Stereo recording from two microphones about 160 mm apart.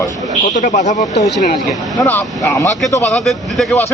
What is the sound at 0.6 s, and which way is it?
Speech, 50° left (ahead or behind).